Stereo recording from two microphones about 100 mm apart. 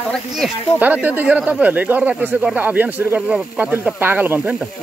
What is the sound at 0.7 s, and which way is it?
Speech, 15° right (ahead or behind).